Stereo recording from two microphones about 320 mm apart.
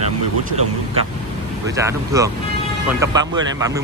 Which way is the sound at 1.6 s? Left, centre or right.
Centre.